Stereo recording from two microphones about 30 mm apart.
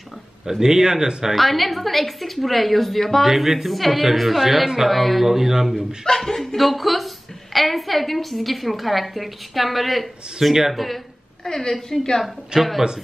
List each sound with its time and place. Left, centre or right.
0.5 s a man's voice: centre
1.3 s a woman's voice: centre
3.3 s a woman's voice: centre
5.2 s a man's voice: centre
6.0 s speech: centre
6.5 s a woman's voice: centre
11.4 s a woman's voice: centre
12.5 s speech: right